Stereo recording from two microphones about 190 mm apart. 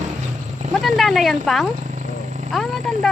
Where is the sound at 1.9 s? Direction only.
40° right (ahead or behind).